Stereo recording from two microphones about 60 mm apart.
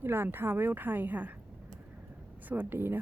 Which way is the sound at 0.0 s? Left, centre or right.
Right.